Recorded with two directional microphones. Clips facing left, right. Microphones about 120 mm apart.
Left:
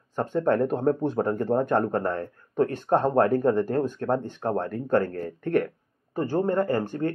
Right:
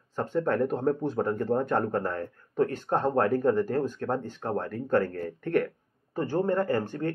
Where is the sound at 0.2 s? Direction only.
20° left (ahead or behind).